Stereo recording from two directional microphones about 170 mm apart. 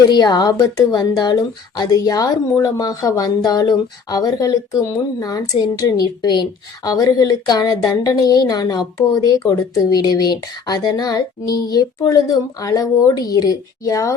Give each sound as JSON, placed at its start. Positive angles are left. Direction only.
{"t": 0.1, "sound": "speech", "side_deg": 25}